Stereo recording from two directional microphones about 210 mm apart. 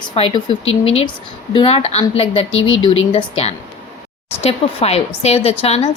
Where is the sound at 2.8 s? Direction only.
25° left (ahead or behind).